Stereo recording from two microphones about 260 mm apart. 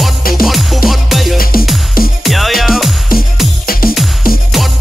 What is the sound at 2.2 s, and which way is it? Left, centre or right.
Music, centre.